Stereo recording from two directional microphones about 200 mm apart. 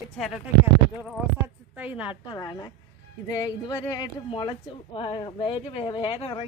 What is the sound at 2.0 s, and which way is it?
Speech, 20° left (ahead or behind).